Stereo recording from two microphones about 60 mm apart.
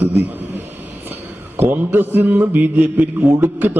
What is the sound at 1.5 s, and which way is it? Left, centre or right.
A man's voice, right.